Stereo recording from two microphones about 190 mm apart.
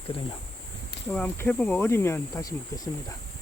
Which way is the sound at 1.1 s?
10° left (ahead or behind).